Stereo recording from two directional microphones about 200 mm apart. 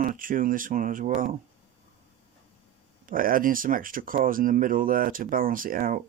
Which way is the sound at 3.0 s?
45° right (ahead or behind).